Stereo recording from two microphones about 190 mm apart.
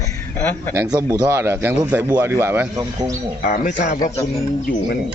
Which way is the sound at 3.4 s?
45° left (ahead or behind).